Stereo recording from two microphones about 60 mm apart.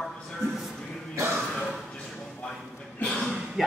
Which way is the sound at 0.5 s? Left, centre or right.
Centre.